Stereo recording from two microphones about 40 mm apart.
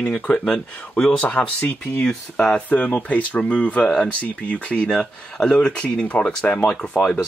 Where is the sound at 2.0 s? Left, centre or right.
Left.